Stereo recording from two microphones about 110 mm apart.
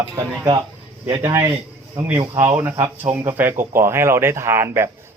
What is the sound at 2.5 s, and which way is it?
A man's voice, 15° right (ahead or behind).